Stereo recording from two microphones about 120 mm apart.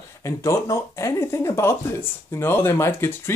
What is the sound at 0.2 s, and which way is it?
Speech, 25° left (ahead or behind).